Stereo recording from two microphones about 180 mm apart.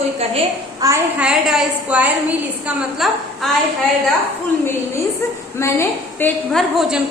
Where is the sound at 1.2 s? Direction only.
5° right (ahead or behind).